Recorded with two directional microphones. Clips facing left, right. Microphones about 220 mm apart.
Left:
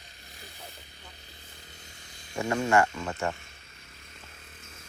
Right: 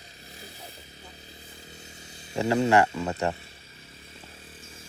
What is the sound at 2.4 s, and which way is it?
Speech, 20° right (ahead or behind).